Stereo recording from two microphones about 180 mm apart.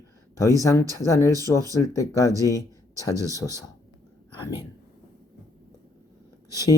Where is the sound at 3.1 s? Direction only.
15° right (ahead or behind).